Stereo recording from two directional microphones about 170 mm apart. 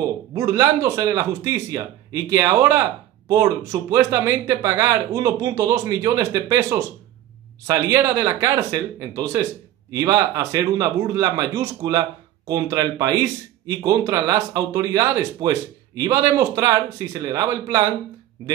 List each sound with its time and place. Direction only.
0.0 s speech: 20° right (ahead or behind)